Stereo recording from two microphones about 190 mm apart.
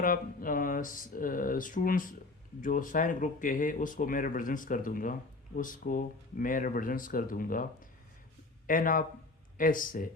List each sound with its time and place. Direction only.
0.0 s speech: 45° left (ahead or behind)